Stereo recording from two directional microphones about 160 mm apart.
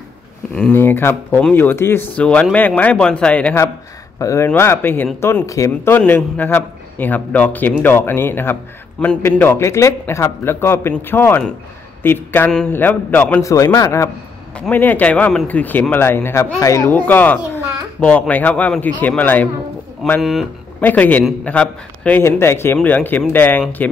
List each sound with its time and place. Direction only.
0.6 s speech: 10° left (ahead or behind)